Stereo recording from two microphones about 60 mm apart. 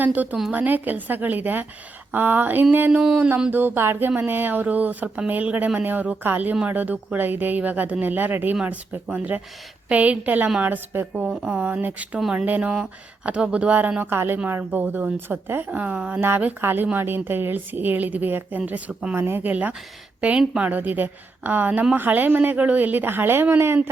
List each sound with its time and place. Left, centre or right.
0.0 s a woman's voice: right
12.6 s speech: centre
14.0 s a woman's voice: right
15.7 s speech: right
16.6 s a woman's voice: right
19.1 s speech: right; by 20.4 s centre
20.6 s a woman's voice: right